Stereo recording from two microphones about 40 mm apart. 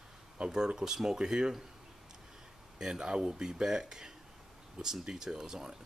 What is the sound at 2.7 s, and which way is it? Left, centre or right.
Speech, centre.